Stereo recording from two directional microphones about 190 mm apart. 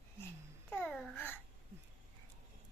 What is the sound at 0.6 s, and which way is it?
Babbling, 5° left (ahead or behind).